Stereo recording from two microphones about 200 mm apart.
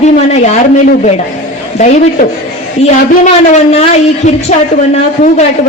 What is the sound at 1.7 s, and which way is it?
Speech, 35° left (ahead or behind).